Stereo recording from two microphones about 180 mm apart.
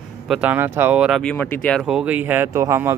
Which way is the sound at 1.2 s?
10° left (ahead or behind).